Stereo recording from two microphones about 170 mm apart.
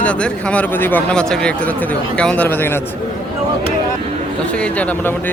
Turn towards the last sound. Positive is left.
turn(degrees=10)  # may be behind; listen again after turning